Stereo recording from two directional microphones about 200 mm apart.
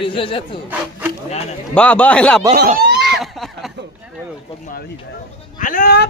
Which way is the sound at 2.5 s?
55° right (ahead or behind).